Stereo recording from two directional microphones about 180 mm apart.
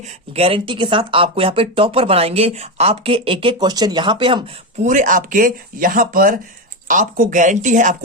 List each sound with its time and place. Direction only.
0.3 s speech: 30° right (ahead or behind)
4.8 s speech: 45° right (ahead or behind)